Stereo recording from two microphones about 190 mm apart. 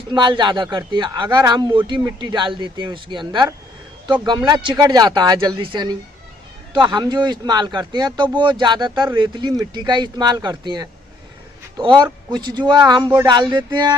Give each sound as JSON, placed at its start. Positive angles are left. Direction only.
{"t": 0.1, "sound": "speech", "side_deg": -25}
{"t": 12.0, "sound": "speech", "side_deg": -20}